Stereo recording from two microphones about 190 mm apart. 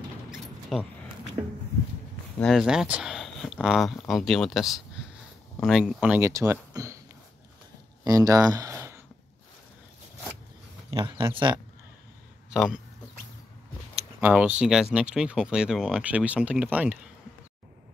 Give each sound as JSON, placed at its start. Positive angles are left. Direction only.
{"t": 0.3, "sound": "mechanisms", "side_deg": 0}
{"t": 1.4, "sound": "speech", "side_deg": -15}
{"t": 2.3, "sound": "speech", "side_deg": 0}
{"t": 8.0, "sound": "a sound", "side_deg": -20}
{"t": 10.9, "sound": "speech", "side_deg": -25}
{"t": 12.4, "sound": "speech", "side_deg": -5}
{"t": 14.2, "sound": "speech", "side_deg": -5}